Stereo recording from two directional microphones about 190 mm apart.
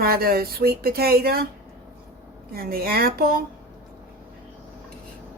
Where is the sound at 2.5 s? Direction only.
50° right (ahead or behind).